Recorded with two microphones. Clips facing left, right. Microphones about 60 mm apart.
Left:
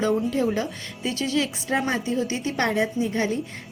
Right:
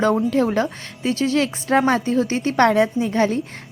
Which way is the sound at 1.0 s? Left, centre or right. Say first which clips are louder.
Right 7 dB; right.